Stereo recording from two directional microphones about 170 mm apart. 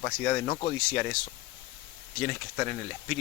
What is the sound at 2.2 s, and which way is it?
Speech, 10° left (ahead or behind).